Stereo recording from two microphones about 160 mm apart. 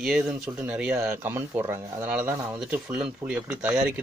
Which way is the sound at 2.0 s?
10° right (ahead or behind).